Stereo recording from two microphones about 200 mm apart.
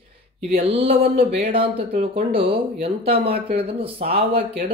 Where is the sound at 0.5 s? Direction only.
30° right (ahead or behind).